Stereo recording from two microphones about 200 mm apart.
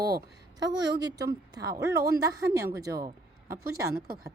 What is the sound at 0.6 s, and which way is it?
Speech, 60° right (ahead or behind).